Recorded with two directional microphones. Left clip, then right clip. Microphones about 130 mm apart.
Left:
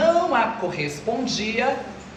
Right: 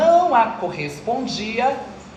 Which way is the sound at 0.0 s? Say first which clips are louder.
Right 4 dB; 80° right.